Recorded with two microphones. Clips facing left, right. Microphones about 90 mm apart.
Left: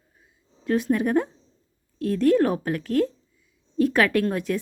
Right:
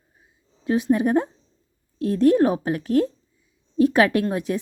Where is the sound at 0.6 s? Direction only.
20° right (ahead or behind).